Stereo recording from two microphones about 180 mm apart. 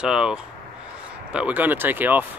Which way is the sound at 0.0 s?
5° right (ahead or behind).